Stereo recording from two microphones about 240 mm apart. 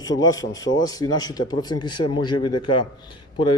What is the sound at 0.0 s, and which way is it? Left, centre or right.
Speech, centre.